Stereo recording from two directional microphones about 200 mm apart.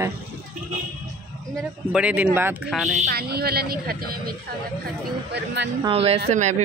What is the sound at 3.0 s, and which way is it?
Speech, 50° right (ahead or behind).